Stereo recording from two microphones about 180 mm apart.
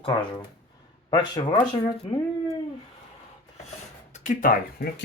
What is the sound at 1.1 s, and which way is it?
Speech, 25° left (ahead or behind).